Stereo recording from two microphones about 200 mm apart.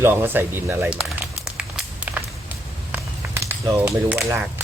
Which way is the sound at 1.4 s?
5° right (ahead or behind).